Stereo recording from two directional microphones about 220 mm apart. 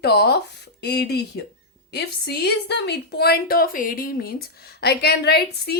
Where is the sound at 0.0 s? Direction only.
50° left (ahead or behind).